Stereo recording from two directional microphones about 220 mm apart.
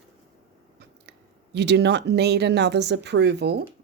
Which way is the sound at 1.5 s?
50° right (ahead or behind).